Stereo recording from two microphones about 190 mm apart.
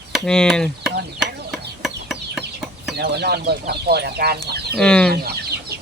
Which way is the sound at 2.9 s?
60° right (ahead or behind).